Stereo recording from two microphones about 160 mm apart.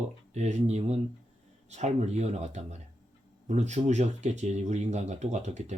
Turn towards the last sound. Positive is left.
turn(degrees=-45)  # may be behind; listen again after turning